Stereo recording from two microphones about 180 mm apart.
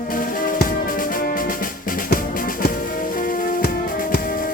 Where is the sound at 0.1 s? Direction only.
50° left (ahead or behind).